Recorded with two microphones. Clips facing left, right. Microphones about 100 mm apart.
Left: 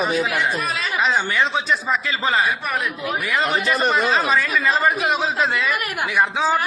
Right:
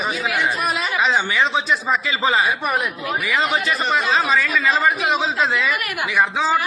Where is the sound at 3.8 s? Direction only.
50° left (ahead or behind).